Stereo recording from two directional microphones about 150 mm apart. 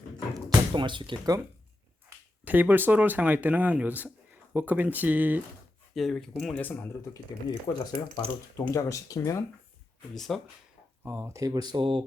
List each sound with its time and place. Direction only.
0.3 s speech: 30° right (ahead or behind)
2.0 s speech: 10° right (ahead or behind)
5.9 s speech: centre (ahead or behind); by 9.4 s 25° left (ahead or behind)
10.2 s speech: centre (ahead or behind)
11.0 s speech: 15° right (ahead or behind); by 12.0 s 35° right (ahead or behind)